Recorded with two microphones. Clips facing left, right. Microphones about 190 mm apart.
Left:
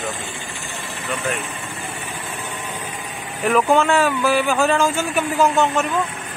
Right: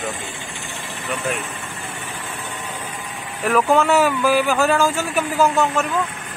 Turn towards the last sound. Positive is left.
turn(degrees=0)  # may be behind; listen again after turning